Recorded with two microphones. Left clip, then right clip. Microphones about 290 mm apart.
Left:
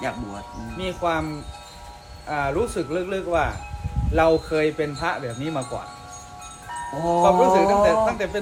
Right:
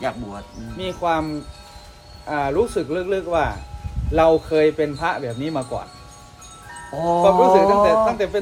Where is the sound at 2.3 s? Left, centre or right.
Right.